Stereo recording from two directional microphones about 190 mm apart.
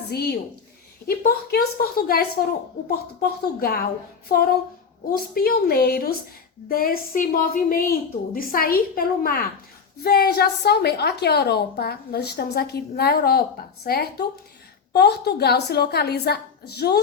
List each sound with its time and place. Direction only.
0.1 s a woman's voice: 55° left (ahead or behind)